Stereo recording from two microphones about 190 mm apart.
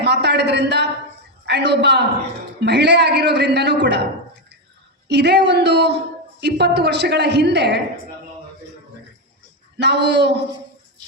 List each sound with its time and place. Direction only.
0.0 s a woman's voice: 65° right (ahead or behind)
5.0 s speech: 65° right (ahead or behind)
9.7 s speech: 65° right (ahead or behind)